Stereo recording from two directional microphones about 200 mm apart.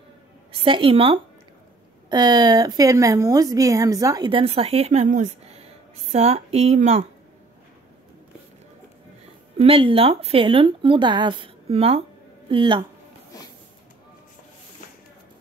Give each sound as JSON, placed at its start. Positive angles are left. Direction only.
{"t": 0.5, "sound": "a woman's voice", "side_deg": -30}
{"t": 9.6, "sound": "a woman's voice", "side_deg": -25}